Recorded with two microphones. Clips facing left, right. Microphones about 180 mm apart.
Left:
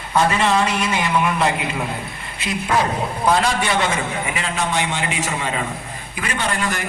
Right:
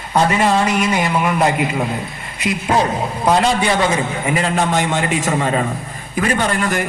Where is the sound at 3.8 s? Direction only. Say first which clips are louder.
Right 4 dB; 40° right (ahead or behind).